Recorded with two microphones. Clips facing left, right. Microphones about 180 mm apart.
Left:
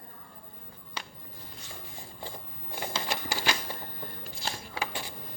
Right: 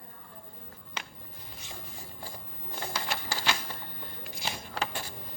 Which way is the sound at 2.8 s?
15° left (ahead or behind).